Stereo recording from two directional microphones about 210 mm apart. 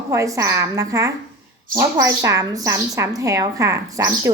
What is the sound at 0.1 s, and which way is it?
A woman's voice, 15° right (ahead or behind).